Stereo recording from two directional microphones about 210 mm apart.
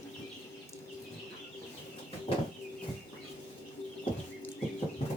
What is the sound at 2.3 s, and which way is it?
Bird, 25° left (ahead or behind).